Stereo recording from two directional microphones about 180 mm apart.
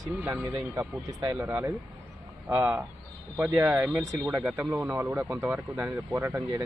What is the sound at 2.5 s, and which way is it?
Speech, 5° right (ahead or behind).